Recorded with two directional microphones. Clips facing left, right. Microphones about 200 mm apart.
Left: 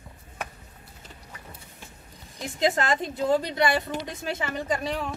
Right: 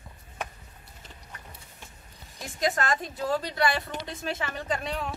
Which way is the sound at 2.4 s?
20° left (ahead or behind).